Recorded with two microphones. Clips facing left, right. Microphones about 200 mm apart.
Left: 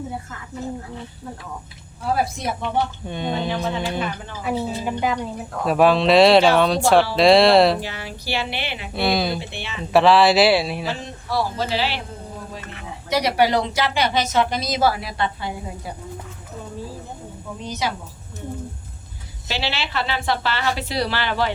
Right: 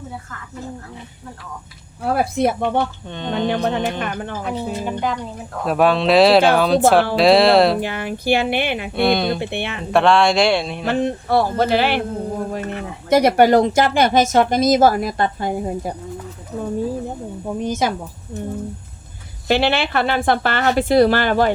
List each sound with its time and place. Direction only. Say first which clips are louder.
2.0 s speech: right 5 dB; 60° right (ahead or behind)
3.1 s speech: left 1 dB; 10° left (ahead or behind)
3.5 s speech: right 4 dB; 65° right (ahead or behind)
4.4 s speech: left 2 dB; 5° left (ahead or behind)
7.8 s speech: right 7 dB; 55° right (ahead or behind)
9.0 s speech: right 3 dB; centre (ahead or behind)
9.4 s speech: right 8 dB; 60° right (ahead or behind)
9.9 s speech: even; 5° left (ahead or behind)
10.8 s speech: right 9 dB; 60° right (ahead or behind)
17.4 s speech: right 6 dB; 50° right (ahead or behind)
19.5 s speech: right 10 dB; 55° right (ahead or behind)